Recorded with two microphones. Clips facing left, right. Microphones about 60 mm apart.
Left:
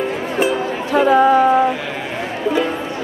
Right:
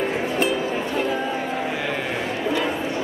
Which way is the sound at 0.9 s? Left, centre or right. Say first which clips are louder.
Left 17 dB; left.